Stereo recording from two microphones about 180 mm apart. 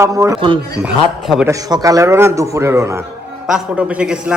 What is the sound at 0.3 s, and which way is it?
Speech, 30° right (ahead or behind).